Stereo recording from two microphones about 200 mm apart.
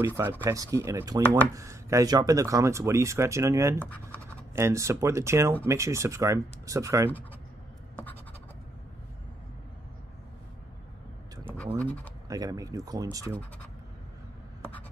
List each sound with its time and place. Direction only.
0.2 s speech: 10° right (ahead or behind)
3.8 s speech: 10° left (ahead or behind)
4.6 s speech: 15° right (ahead or behind)
7.9 s scratch: 10° left (ahead or behind)
11.8 s speech: 5° left (ahead or behind)
12.3 s speech: 20° right (ahead or behind)
14.6 s writing: 10° left (ahead or behind)